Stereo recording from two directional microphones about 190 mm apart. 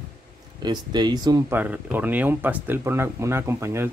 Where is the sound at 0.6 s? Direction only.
20° right (ahead or behind).